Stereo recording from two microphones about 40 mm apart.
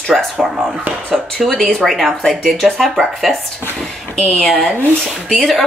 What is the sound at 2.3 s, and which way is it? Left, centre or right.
A woman's voice, centre.